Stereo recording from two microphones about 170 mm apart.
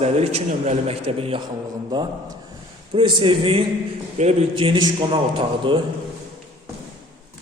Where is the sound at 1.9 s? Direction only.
25° right (ahead or behind).